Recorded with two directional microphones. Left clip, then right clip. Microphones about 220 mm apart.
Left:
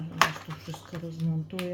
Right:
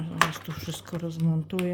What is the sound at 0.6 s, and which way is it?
Speech, 40° right (ahead or behind).